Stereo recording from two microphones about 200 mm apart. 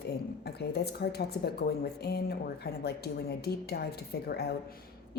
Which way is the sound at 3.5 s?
50° left (ahead or behind).